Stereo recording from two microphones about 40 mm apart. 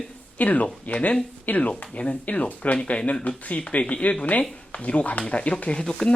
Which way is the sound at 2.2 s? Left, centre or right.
Left.